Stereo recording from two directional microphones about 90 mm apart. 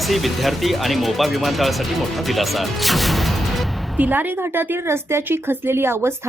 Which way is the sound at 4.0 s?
20° right (ahead or behind).